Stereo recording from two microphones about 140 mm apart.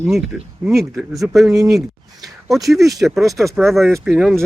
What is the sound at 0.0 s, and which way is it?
Speech, centre (ahead or behind).